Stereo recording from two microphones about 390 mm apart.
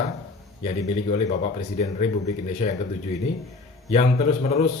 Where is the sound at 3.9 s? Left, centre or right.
Centre.